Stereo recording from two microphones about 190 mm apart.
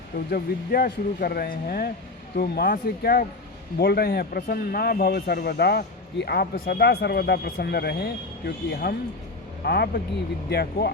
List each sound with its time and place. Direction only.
0.3 s speech: 50° left (ahead or behind)